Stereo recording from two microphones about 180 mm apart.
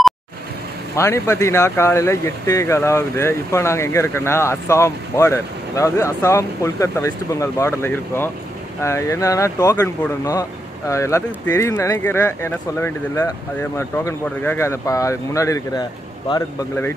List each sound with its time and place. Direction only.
0.9 s speech: 15° left (ahead or behind)
10.9 s speech: 15° left (ahead or behind)